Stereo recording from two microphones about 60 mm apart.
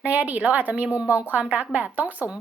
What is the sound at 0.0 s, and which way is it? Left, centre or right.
A woman's voice, right.